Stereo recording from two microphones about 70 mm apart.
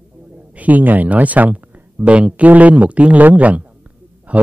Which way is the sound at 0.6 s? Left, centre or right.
Right.